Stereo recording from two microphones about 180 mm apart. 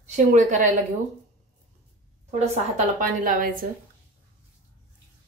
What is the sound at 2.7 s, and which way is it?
Speech, 50° right (ahead or behind).